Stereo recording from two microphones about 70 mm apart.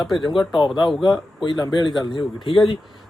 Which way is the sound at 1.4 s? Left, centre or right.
Left.